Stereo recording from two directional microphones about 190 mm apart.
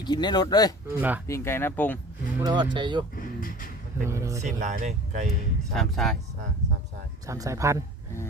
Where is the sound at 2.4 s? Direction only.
25° right (ahead or behind).